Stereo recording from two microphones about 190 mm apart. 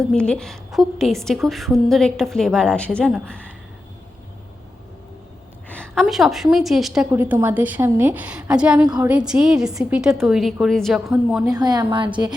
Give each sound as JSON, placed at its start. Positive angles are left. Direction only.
{"t": 0.1, "sound": "a woman's voice", "side_deg": 5}
{"t": 5.6, "sound": "a woman's voice", "side_deg": 5}
{"t": 11.5, "sound": "a woman's voice", "side_deg": -20}